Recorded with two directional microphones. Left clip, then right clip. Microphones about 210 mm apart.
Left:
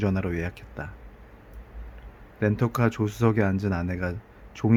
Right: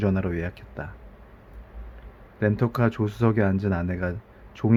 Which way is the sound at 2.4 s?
5° left (ahead or behind).